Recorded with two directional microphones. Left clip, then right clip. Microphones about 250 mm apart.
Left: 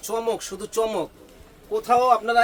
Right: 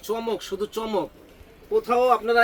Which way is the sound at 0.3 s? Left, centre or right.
Left.